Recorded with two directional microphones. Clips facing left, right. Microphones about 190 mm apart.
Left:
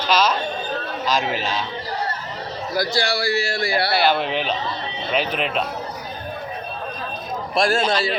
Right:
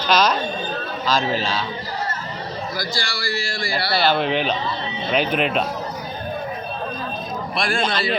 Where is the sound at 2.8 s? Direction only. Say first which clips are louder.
Left 6 dB; 60° left (ahead or behind).